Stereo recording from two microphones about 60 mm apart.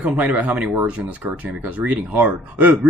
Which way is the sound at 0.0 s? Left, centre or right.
Right.